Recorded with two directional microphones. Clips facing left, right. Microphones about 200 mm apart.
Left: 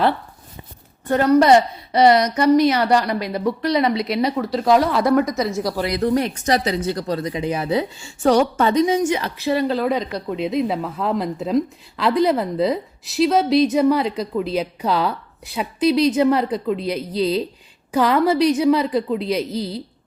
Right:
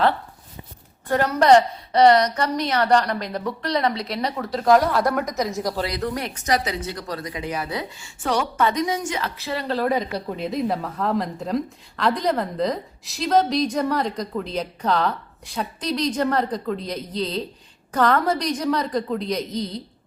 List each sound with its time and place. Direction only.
1.0 s a woman's voice: centre (ahead or behind)
5.2 s speech: 15° right (ahead or behind)
5.8 s speech: 25° left (ahead or behind)
9.7 s a woman's voice: 5° right (ahead or behind)